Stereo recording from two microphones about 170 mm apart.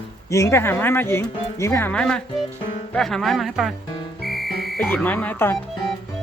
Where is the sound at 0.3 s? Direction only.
20° left (ahead or behind); by 3.7 s centre (ahead or behind).